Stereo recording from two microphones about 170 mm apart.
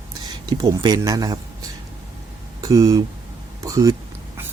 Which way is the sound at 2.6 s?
20° right (ahead or behind).